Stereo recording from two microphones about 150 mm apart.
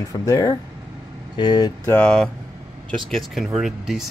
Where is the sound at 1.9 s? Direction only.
5° left (ahead or behind).